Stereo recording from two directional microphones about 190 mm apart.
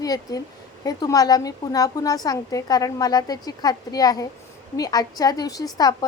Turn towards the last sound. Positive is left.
turn(degrees=20)  # may be behind; listen again after turning